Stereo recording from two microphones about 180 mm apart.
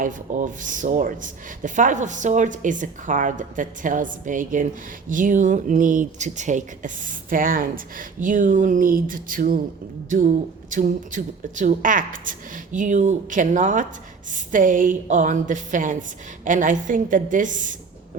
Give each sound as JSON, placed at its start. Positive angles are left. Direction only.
{"t": 0.0, "sound": "speech", "side_deg": -45}